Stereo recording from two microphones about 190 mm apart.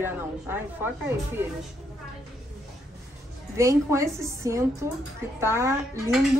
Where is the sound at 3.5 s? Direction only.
15° right (ahead or behind).